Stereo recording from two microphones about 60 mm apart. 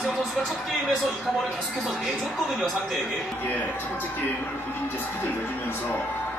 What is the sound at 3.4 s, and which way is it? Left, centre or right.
Speech, left.